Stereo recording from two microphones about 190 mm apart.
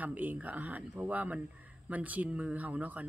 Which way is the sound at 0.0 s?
10° right (ahead or behind).